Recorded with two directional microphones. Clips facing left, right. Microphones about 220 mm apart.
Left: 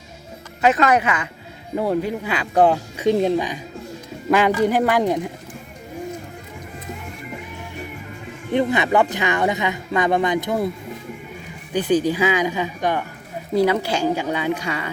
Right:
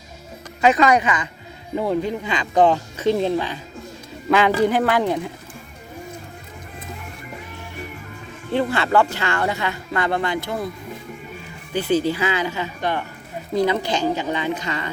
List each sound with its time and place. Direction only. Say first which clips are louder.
0.6 s speech: right 1 dB; 5° left (ahead or behind)
8.4 s speech: left 2 dB; 15° left (ahead or behind)
11.7 s speech: left 1 dB; 15° left (ahead or behind)